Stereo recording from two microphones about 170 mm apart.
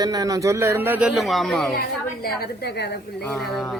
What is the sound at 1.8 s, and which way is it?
A woman's voice, 60° left (ahead or behind).